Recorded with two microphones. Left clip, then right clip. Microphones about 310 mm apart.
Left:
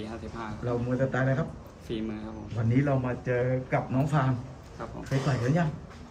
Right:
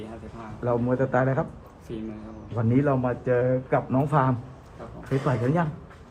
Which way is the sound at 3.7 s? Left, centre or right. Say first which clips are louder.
Right 5 dB; centre.